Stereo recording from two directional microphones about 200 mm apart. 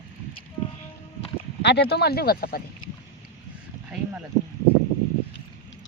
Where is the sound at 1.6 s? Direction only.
55° left (ahead or behind).